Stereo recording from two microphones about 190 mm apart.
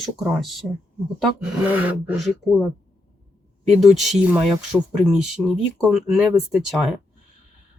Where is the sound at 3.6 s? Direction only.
Centre (ahead or behind).